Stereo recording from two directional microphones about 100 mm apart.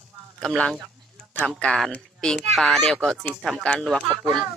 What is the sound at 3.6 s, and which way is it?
Speech, 10° left (ahead or behind).